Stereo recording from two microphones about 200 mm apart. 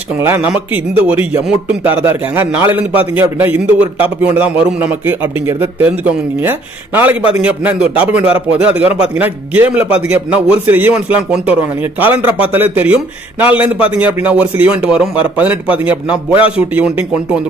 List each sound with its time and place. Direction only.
0.2 s a man's voice: 10° right (ahead or behind)
16.3 s a man's voice: 25° left (ahead or behind)
16.7 s speech: 5° right (ahead or behind)